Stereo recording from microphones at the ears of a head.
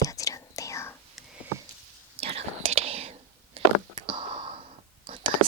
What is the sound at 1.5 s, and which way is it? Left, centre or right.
Whispering, right.